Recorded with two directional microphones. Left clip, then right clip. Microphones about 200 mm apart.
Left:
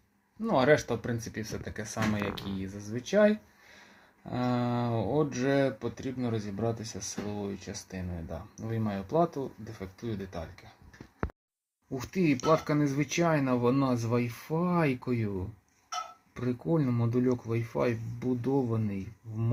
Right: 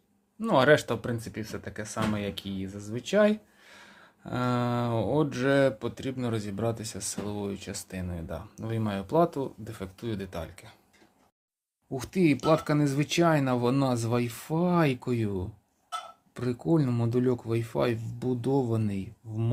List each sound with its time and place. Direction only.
0.4 s speech: 15° right (ahead or behind)
12.5 s speech: 15° right (ahead or behind)